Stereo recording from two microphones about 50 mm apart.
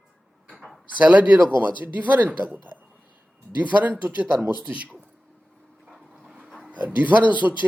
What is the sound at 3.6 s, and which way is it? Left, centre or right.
Speech, right.